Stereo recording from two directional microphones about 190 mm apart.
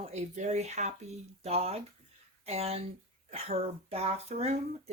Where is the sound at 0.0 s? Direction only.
35° right (ahead or behind).